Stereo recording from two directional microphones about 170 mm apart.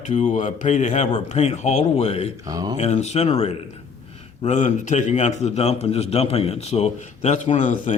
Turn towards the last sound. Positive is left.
turn(degrees=45)  # may be behind; listen again after turning